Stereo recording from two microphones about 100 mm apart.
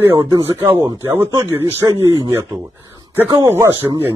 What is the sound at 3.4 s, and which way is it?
Speech, 25° right (ahead or behind).